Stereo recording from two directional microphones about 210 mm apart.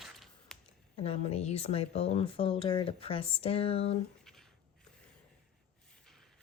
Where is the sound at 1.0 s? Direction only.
30° left (ahead or behind).